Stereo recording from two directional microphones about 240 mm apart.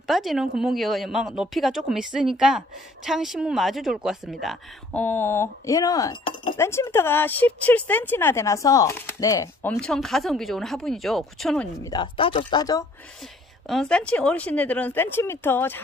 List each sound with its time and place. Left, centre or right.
0.0 s a woman's voice: centre
11.9 s speech: left
13.7 s a woman's voice: centre